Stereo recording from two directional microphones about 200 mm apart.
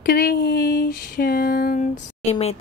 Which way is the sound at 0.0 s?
50° left (ahead or behind).